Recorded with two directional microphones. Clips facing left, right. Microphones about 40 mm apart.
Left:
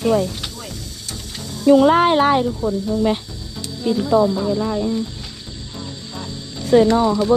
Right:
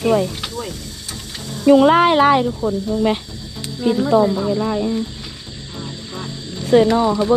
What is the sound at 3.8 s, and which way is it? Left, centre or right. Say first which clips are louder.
Speech: right 2 dB; right.